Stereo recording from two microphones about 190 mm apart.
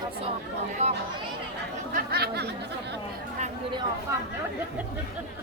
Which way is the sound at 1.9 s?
55° right (ahead or behind).